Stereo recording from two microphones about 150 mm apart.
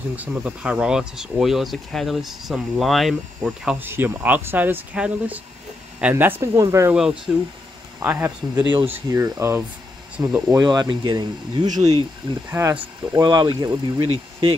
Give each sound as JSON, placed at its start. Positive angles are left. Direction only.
{"t": 0.1, "sound": "speech", "side_deg": -10}
{"t": 6.9, "sound": "speech", "side_deg": -10}
{"t": 8.5, "sound": "speech", "side_deg": -30}
{"t": 8.8, "sound": "speech", "side_deg": -15}
{"t": 11.7, "sound": "speech", "side_deg": -45}
{"t": 12.4, "sound": "speech", "side_deg": -15}
{"t": 12.7, "sound": "speech", "side_deg": -30}